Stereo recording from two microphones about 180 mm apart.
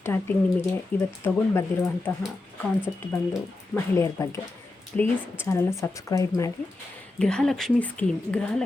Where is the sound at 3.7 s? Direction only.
15° left (ahead or behind).